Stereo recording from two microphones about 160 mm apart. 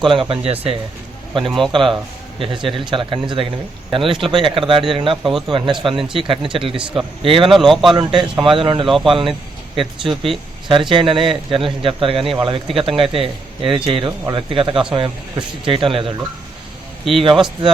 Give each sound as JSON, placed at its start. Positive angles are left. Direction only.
{"t": 0.1, "sound": "a man's voice", "side_deg": -35}
{"t": 7.5, "sound": "speech", "side_deg": 0}
{"t": 7.9, "sound": "speech", "side_deg": -30}